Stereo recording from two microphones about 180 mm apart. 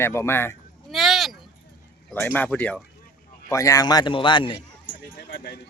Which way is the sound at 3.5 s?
20° left (ahead or behind).